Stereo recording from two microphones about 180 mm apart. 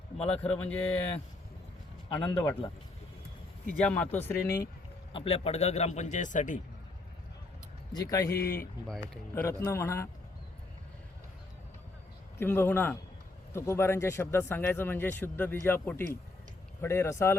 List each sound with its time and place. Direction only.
0.2 s speech: 5° left (ahead or behind)
2.1 s speech: 10° left (ahead or behind)
3.8 s speech: 10° left (ahead or behind)
5.1 s a man's voice: 35° left (ahead or behind)
7.9 s a man's voice: 20° left (ahead or behind)
12.4 s speech: 10° left (ahead or behind)